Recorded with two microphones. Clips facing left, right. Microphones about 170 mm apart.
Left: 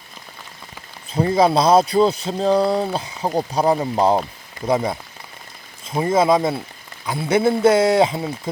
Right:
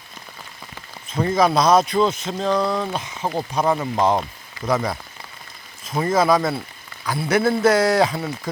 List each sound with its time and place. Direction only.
1.3 s a man's voice: 30° left (ahead or behind)